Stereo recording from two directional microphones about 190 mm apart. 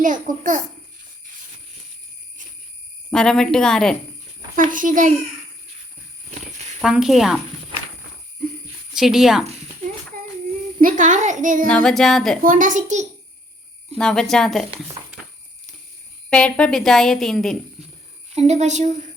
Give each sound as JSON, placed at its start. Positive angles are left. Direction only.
{"t": 0.0, "sound": "a child's voice", "side_deg": -45}
{"t": 3.1, "sound": "a woman's voice", "side_deg": 5}
{"t": 4.5, "sound": "a child's voice", "side_deg": -45}
{"t": 6.8, "sound": "a woman's voice", "side_deg": 0}
{"t": 8.9, "sound": "speech", "side_deg": 0}
{"t": 10.8, "sound": "a child's voice", "side_deg": -45}
{"t": 11.7, "sound": "a woman's voice", "side_deg": 5}
{"t": 12.4, "sound": "a child's voice", "side_deg": -45}
{"t": 14.0, "sound": "a woman's voice", "side_deg": 0}
{"t": 16.3, "sound": "a woman's voice", "side_deg": 5}
{"t": 18.3, "sound": "speech", "side_deg": -35}